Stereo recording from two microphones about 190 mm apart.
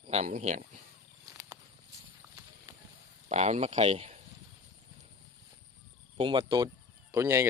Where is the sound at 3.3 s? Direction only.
35° right (ahead or behind).